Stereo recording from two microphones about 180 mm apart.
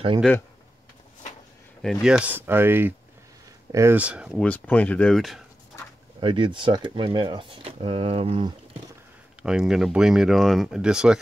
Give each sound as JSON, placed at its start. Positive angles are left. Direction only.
{"t": 1.8, "sound": "speech", "side_deg": 0}
{"t": 4.4, "sound": "speech", "side_deg": 10}
{"t": 6.2, "sound": "speech", "side_deg": -25}
{"t": 9.4, "sound": "speech", "side_deg": -5}